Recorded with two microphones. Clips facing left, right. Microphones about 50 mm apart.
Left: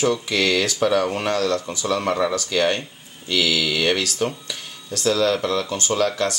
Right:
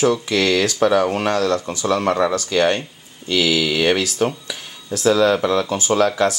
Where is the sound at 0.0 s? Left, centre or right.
Centre.